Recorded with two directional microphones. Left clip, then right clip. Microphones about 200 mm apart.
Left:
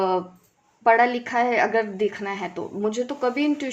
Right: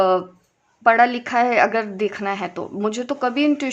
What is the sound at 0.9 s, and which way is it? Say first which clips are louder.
Speech: right 3 dB; 30° right (ahead or behind).